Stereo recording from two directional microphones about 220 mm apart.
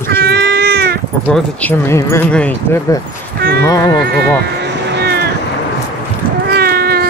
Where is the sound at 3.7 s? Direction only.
15° left (ahead or behind).